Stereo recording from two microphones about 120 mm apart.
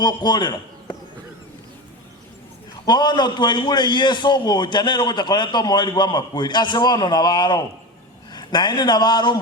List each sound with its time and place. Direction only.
0.0 s a man's voice: 35° left (ahead or behind)
2.8 s a man's voice: 35° left (ahead or behind)